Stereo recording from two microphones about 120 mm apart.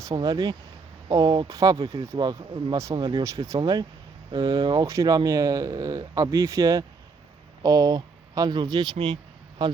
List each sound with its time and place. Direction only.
0.0 s speech: 30° right (ahead or behind)
2.7 s speech: 30° right (ahead or behind)